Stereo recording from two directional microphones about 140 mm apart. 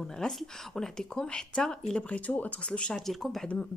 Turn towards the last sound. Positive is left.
turn(degrees=5)  # may be behind; listen again after turning